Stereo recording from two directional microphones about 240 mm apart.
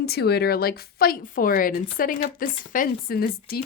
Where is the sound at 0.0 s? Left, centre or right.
Left.